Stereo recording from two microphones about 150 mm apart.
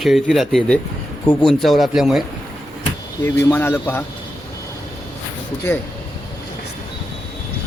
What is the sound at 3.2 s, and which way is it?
Speech, 15° left (ahead or behind).